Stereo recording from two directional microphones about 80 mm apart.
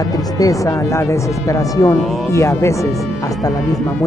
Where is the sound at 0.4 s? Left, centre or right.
Left.